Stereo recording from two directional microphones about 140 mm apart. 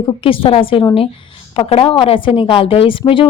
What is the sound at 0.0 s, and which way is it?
A woman's voice, 40° left (ahead or behind).